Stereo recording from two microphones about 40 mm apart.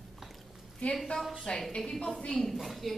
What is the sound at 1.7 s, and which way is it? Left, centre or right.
Speech, left.